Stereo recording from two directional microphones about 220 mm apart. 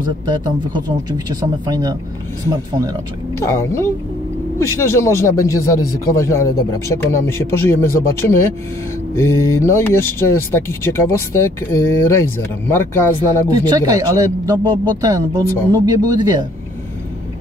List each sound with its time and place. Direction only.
0.3 s speech: 20° right (ahead or behind)
3.3 s speech: 10° left (ahead or behind)
13.5 s speech: 15° right (ahead or behind)